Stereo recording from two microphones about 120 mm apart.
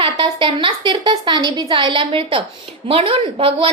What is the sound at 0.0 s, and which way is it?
A woman's voice, 45° right (ahead or behind).